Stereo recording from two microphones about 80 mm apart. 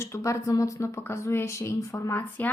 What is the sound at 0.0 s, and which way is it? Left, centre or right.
A woman's voice, left.